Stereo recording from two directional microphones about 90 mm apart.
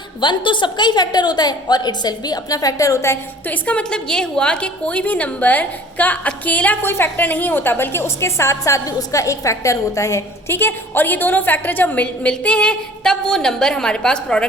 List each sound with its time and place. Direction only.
0.2 s a woman's voice: 60° left (ahead or behind); by 3.2 s 35° left (ahead or behind)
3.4 s a woman's voice: 15° left (ahead or behind)